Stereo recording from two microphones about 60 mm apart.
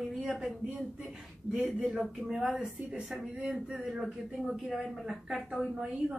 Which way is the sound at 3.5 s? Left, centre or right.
Centre.